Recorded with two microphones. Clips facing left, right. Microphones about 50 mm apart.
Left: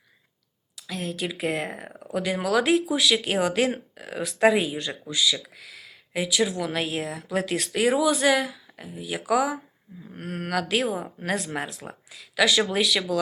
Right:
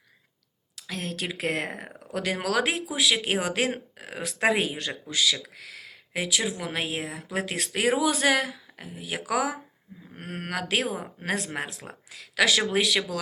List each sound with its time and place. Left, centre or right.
0.8 s speech: right
5.5 s a sound: right
6.6 s speech: right